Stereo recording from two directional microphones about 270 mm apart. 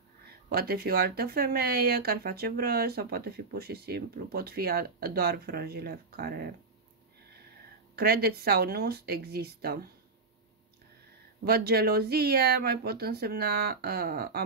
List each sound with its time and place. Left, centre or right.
0.5 s speech: right
7.9 s speech: right
11.4 s speech: right